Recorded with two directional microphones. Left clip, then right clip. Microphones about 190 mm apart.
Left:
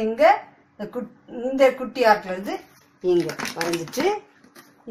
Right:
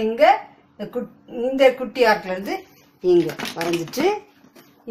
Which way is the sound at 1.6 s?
15° right (ahead or behind).